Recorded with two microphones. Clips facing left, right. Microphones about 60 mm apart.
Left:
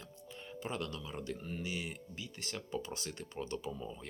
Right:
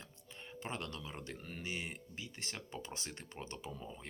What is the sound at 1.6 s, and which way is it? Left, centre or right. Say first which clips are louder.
Speech: right 2 dB; right.